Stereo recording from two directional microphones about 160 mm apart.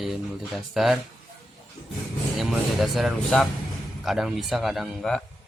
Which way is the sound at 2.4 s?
Centre (ahead or behind).